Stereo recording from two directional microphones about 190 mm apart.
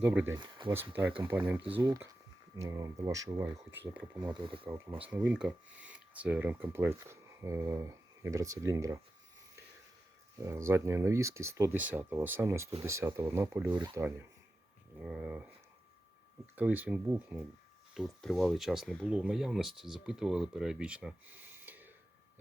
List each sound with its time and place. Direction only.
0.0 s speech: 5° right (ahead or behind)
4.2 s speech: 25° right (ahead or behind)
4.6 s speech: 10° right (ahead or behind)
10.4 s speech: 15° right (ahead or behind)
16.6 s speech: 10° right (ahead or behind)
17.9 s speech: centre (ahead or behind)